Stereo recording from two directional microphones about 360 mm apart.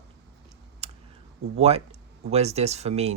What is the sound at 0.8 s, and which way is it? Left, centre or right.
Computer keyboard, centre.